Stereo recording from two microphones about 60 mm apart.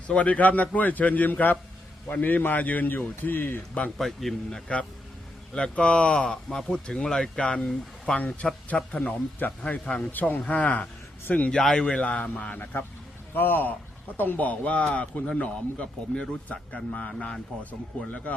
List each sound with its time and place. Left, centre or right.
0.1 s a man's voice: left
3.9 s a man's voice: centre
5.5 s a man's voice: centre
11.5 s speech: centre
11.9 s a man's voice: left
17.6 s speech: left